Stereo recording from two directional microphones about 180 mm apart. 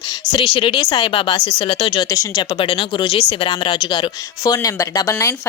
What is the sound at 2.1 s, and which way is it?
Speech, 20° left (ahead or behind).